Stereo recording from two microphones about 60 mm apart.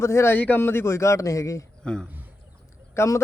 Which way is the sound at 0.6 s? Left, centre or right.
Left.